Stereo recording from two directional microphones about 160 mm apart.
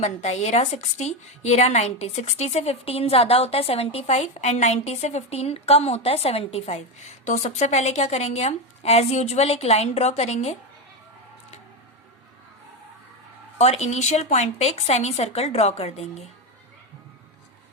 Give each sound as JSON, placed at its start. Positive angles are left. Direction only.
{"t": 0.0, "sound": "a woman's voice", "side_deg": 45}
{"t": 13.6, "sound": "speech", "side_deg": 40}